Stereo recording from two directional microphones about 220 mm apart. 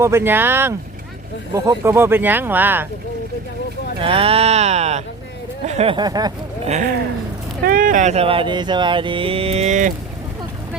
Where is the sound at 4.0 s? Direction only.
25° right (ahead or behind).